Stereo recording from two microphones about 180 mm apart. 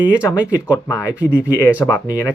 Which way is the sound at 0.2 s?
15° left (ahead or behind).